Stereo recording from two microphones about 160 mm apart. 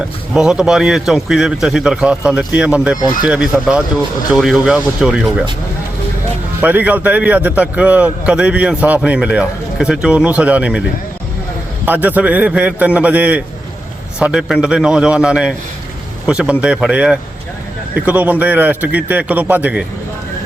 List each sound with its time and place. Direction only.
0.3 s speech: 5° right (ahead or behind)
6.6 s a man's voice: 10° right (ahead or behind)
11.9 s a man's voice: 10° right (ahead or behind)